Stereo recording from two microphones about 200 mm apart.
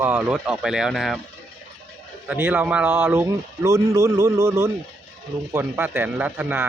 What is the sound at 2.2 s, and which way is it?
Speech, 10° right (ahead or behind).